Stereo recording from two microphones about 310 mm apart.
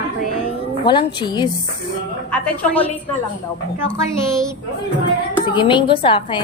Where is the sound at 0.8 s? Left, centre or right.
Centre.